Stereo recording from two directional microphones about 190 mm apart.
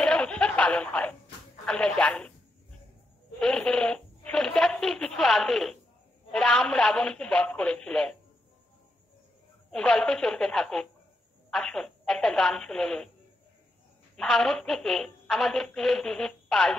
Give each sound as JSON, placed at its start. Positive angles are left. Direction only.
{"t": 0.0, "sound": "snicker", "side_deg": 5}
{"t": 1.7, "sound": "a woman's voice", "side_deg": 5}
{"t": 3.3, "sound": "a woman's voice", "side_deg": 5}
{"t": 9.7, "sound": "a woman's voice", "side_deg": 5}
{"t": 14.1, "sound": "a woman's voice", "side_deg": 0}